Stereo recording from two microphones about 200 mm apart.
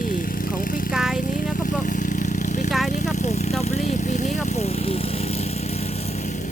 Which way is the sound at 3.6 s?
35° left (ahead or behind).